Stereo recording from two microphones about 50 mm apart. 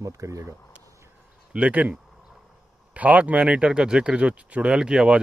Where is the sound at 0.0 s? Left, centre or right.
Right.